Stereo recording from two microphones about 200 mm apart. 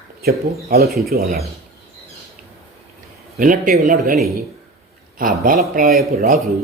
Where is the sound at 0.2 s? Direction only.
50° right (ahead or behind).